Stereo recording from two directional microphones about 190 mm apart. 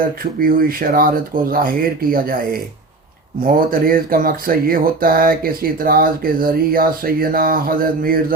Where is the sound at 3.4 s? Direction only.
50° right (ahead or behind).